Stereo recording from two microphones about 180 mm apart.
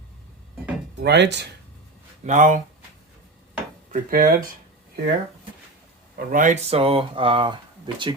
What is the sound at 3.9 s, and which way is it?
Speech, 50° right (ahead or behind).